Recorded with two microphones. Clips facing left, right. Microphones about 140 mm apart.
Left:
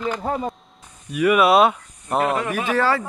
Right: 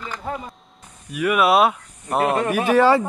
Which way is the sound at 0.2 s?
40° left (ahead or behind).